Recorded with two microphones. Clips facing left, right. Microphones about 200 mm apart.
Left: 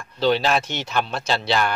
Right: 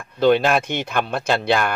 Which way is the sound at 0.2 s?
50° right (ahead or behind).